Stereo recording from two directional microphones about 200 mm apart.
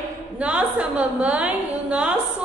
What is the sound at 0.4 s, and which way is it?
A woman's voice, 5° right (ahead or behind).